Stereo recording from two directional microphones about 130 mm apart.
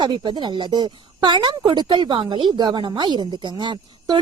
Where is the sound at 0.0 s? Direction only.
35° right (ahead or behind).